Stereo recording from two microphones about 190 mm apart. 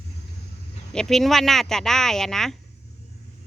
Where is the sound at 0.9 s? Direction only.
Centre (ahead or behind).